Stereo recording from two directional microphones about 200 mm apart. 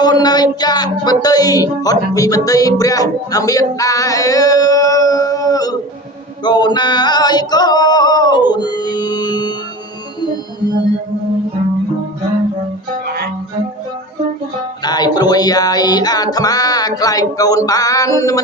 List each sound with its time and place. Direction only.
0.0 s a sound: 20° left (ahead or behind)
6.4 s singing: 20° left (ahead or behind)
10.2 s music: 20° left (ahead or behind)
14.8 s music: 20° left (ahead or behind)